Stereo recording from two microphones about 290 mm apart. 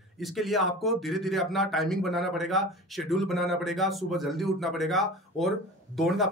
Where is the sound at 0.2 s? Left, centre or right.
Centre.